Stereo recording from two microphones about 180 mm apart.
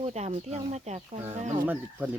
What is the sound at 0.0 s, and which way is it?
Speech, 35° right (ahead or behind).